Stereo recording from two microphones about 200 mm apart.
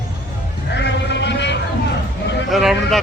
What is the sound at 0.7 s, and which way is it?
Sheep, 60° left (ahead or behind).